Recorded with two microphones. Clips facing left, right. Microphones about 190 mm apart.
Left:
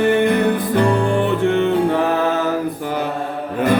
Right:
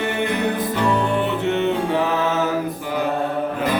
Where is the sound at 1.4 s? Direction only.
50° left (ahead or behind).